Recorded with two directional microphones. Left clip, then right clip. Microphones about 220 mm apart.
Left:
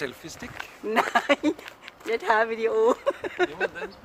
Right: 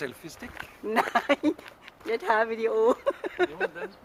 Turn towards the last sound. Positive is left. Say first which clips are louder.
# left 2 dB
turn(degrees=25)  # may be behind; listen again after turning